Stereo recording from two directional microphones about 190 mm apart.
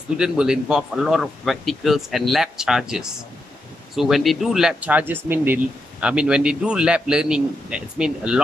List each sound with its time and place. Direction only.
0.2 s speech: 5° right (ahead or behind)